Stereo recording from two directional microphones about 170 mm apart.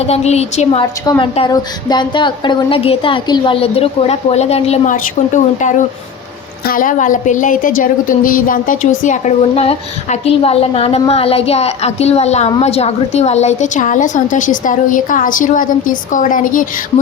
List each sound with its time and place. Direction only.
0.1 s a woman's voice: 40° left (ahead or behind)
1.0 s a woman's voice: 25° left (ahead or behind); by 16.6 s 50° left (ahead or behind)